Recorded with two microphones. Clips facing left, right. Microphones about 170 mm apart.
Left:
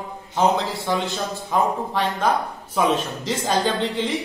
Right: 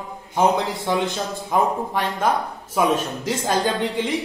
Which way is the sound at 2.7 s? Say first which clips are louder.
Right 1 dB; 10° right (ahead or behind).